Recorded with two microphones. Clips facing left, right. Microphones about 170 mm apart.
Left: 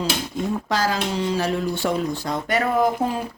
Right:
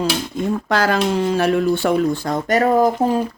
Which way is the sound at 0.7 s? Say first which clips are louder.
Right 7 dB; 60° right (ahead or behind).